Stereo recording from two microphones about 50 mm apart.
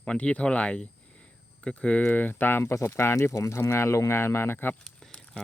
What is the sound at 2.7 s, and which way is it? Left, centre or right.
Speech, left.